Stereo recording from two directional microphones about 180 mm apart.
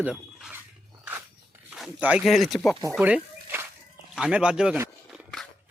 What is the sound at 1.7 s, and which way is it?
Speech, 5° right (ahead or behind).